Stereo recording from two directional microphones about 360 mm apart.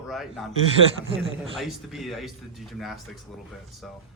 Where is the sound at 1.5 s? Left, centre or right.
Centre.